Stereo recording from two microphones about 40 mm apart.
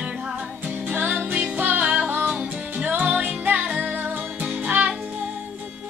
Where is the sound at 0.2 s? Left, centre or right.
Right.